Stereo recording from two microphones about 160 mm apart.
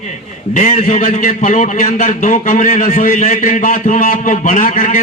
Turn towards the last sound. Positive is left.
turn(degrees=55)  # may be behind; listen again after turning